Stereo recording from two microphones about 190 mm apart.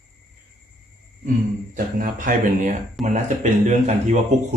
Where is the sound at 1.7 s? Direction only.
45° right (ahead or behind).